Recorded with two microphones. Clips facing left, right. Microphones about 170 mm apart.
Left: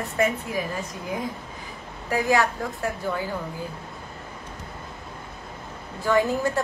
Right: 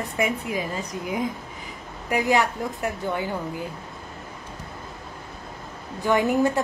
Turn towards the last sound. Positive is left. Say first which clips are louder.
# right 2 dB
turn(degrees=-20)  # may be behind; listen again after turning